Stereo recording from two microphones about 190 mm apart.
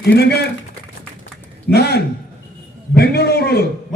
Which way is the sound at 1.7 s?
60° left (ahead or behind).